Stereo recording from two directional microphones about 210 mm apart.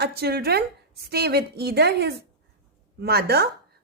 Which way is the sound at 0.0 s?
50° right (ahead or behind).